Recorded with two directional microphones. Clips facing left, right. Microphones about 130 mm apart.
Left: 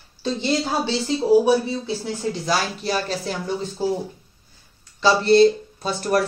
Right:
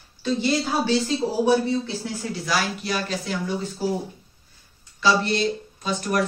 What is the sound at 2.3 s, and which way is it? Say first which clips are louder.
Speech: left 2 dB; 30° left (ahead or behind).